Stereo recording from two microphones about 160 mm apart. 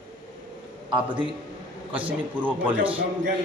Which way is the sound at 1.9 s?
10° right (ahead or behind).